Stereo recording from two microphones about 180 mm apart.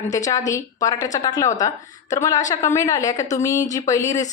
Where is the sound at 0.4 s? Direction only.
20° left (ahead or behind).